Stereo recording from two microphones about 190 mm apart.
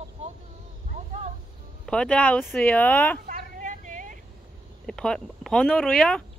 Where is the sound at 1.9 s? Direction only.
5° left (ahead or behind).